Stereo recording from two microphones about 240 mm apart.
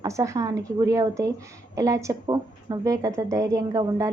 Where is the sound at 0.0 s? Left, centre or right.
Centre.